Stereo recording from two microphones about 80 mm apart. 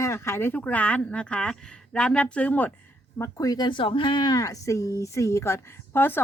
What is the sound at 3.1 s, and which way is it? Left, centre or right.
Speech, left.